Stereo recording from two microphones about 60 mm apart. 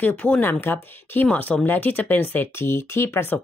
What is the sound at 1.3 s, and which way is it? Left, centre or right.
Speech, left.